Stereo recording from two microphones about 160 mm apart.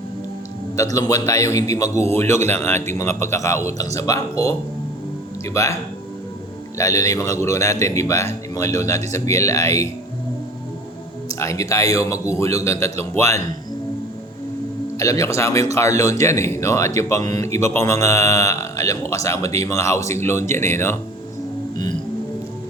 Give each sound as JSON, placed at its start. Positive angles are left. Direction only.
{"t": 0.9, "sound": "a man's voice", "side_deg": 20}
{"t": 6.7, "sound": "speech", "side_deg": 20}
{"t": 11.3, "sound": "speech", "side_deg": 20}
{"t": 14.9, "sound": "speech", "side_deg": 20}